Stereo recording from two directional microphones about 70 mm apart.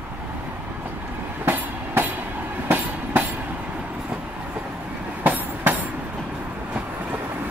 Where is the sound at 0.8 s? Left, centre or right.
Right.